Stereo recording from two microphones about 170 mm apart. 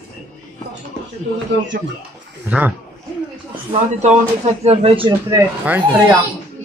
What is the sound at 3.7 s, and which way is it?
Speech, 40° right (ahead or behind).